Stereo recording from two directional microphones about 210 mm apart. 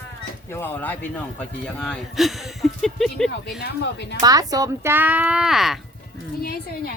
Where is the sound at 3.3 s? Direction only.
55° left (ahead or behind).